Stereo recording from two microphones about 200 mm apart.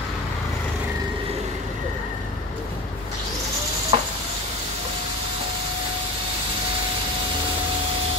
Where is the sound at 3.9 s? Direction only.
25° right (ahead or behind).